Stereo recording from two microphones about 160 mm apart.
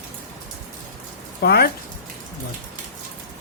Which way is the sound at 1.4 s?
80° left.